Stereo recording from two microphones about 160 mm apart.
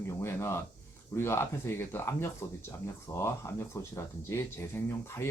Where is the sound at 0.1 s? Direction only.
15° left (ahead or behind).